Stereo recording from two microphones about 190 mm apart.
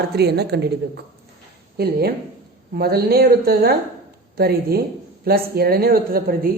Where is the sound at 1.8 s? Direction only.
55° right (ahead or behind).